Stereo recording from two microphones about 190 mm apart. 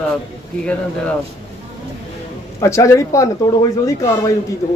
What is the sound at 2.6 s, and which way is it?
Speech, 15° left (ahead or behind).